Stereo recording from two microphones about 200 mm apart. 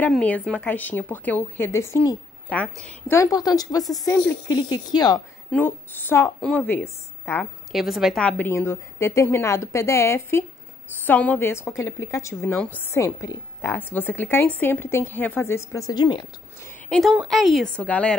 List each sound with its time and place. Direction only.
0.0 s a woman's voice: 5° left (ahead or behind)
7.7 s a woman's voice: centre (ahead or behind); by 16.7 s 20° left (ahead or behind)
16.9 s speech: 5° right (ahead or behind)